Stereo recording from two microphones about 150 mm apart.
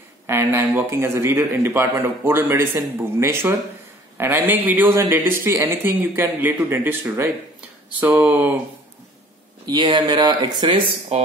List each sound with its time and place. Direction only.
0.3 s speech: 15° right (ahead or behind)
9.7 s speech: 30° right (ahead or behind)
11.1 s speech: 45° right (ahead or behind)